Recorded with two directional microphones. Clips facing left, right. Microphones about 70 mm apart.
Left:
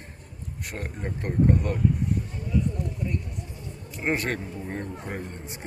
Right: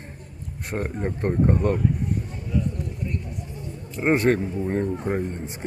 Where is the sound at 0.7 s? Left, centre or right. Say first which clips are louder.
Right 7 dB; right.